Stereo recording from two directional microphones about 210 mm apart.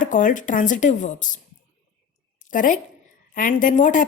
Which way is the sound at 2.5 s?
40° left (ahead or behind).